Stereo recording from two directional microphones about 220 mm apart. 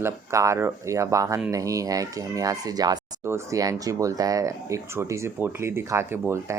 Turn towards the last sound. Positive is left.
turn(degrees=-10)  # may be behind; listen again after turning